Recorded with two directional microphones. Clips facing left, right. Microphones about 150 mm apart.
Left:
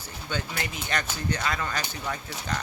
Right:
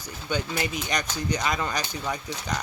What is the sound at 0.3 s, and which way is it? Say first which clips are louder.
A woman's voice: right 4 dB; 15° right (ahead or behind).